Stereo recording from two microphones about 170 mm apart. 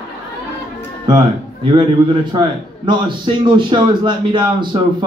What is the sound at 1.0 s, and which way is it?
A man's voice, 25° right (ahead or behind).